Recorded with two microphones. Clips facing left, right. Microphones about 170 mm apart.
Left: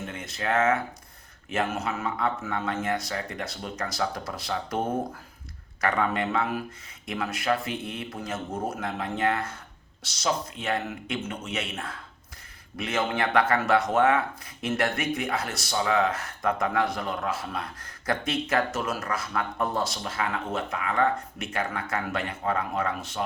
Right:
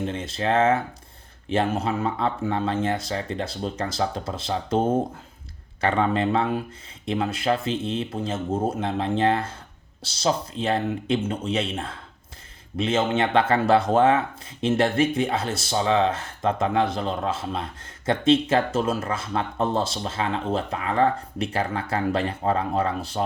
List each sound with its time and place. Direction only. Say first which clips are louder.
0.0 s speech: right 6 dB; 30° right (ahead or behind)